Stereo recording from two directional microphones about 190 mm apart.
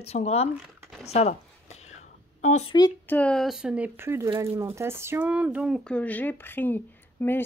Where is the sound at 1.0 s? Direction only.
35° left (ahead or behind).